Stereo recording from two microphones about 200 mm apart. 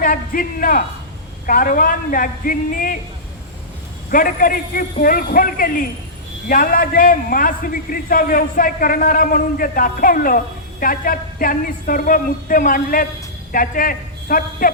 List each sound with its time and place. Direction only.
0.0 s a man's voice: 45° left (ahead or behind)
4.1 s a man's voice: 45° left (ahead or behind)